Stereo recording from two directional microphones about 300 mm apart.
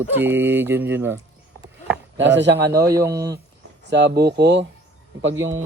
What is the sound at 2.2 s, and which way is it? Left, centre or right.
Speech, right.